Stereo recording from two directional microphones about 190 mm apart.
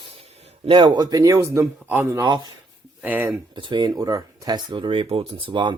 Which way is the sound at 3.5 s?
25° right (ahead or behind).